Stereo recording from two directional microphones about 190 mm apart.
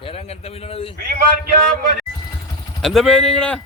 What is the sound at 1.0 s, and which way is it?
Speech, 50° right (ahead or behind).